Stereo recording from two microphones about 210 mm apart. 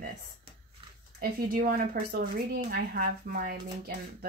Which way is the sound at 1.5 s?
45° right (ahead or behind).